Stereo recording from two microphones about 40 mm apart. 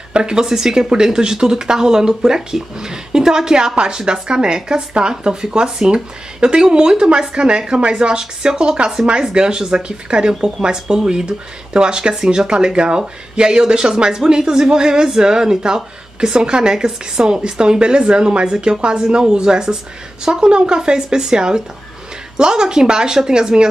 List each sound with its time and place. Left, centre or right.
0.1 s speech: centre